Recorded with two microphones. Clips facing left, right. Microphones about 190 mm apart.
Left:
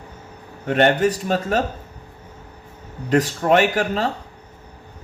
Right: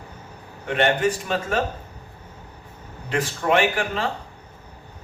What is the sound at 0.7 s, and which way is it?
Speech, 40° left (ahead or behind).